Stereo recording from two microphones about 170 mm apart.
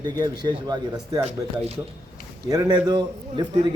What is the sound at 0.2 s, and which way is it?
Speech, 25° right (ahead or behind).